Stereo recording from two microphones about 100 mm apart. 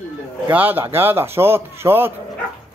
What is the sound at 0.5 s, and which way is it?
Speech, 20° right (ahead or behind).